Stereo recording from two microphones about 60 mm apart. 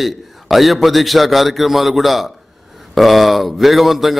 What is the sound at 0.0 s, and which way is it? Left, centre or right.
A man's voice, centre.